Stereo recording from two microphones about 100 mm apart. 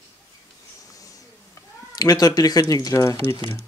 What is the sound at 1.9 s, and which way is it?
Speech, 40° left (ahead or behind).